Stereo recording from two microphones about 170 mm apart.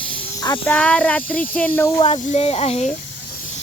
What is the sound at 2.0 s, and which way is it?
Speech, 35° left (ahead or behind).